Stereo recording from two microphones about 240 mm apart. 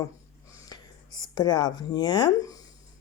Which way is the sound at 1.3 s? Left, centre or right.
Centre.